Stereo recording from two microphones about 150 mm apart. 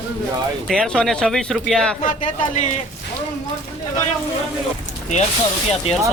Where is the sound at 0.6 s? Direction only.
Centre (ahead or behind).